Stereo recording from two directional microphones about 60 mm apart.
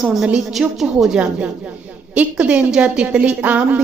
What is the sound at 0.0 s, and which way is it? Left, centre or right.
A woman's voice, centre.